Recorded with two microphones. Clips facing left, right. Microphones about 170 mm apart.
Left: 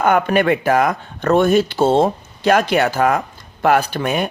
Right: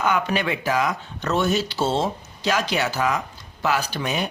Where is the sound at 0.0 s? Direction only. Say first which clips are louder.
Left 7 dB; 55° left (ahead or behind).